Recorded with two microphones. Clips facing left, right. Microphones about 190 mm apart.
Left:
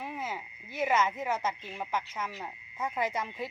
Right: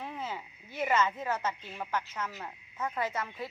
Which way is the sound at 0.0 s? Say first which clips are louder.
Left 1 dB; 10° left (ahead or behind).